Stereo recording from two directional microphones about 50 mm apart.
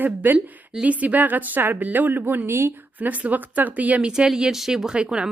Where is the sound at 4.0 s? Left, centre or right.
Centre.